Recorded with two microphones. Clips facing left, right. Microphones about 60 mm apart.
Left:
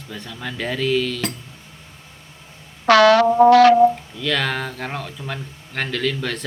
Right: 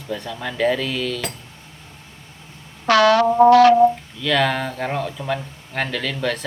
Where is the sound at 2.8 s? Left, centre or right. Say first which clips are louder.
Left 2 dB; left.